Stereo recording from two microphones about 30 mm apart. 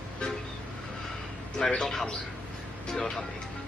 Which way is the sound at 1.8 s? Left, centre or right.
Centre.